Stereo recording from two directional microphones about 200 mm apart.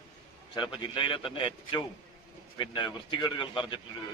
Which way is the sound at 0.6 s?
25° left (ahead or behind).